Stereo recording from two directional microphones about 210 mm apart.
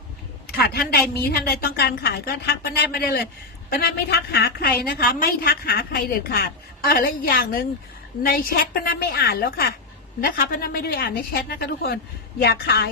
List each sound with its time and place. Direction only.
0.5 s a woman's voice: 45° left (ahead or behind)